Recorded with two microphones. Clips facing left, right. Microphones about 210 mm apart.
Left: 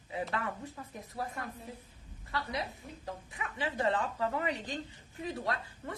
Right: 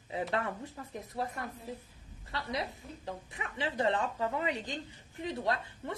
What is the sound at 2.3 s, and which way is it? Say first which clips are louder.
A woman's voice: even; 25° right (ahead or behind).